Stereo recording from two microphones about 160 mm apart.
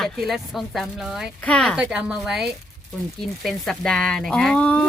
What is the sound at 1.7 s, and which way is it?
Speech, 5° right (ahead or behind).